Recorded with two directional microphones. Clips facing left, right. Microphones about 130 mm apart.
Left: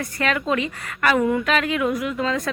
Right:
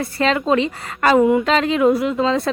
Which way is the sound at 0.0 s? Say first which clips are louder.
Right 5 dB; 25° right (ahead or behind).